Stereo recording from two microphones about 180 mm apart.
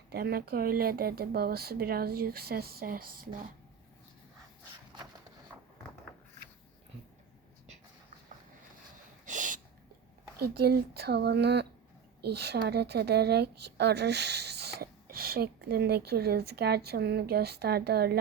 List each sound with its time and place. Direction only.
0.1 s speech: 60° right (ahead or behind)
9.2 s snort: 45° right (ahead or behind)
10.4 s speech: 60° right (ahead or behind)